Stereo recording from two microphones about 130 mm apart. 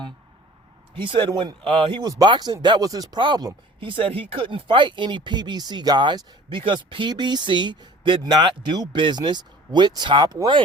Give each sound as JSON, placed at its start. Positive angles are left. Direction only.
{"t": 0.9, "sound": "speech", "side_deg": -40}